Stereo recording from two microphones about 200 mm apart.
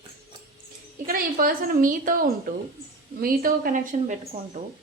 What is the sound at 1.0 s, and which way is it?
Speech, 45° right (ahead or behind).